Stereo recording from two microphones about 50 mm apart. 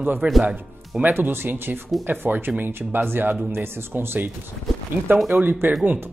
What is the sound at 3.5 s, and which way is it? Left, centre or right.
Speech, right.